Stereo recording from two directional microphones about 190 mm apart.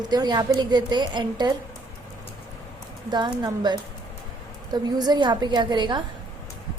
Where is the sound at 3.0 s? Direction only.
25° right (ahead or behind).